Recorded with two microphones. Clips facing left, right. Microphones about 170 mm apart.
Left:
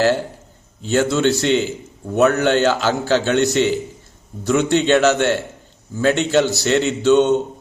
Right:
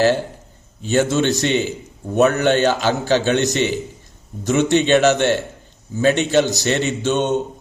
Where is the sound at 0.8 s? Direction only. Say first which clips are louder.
Even; 20° right (ahead or behind).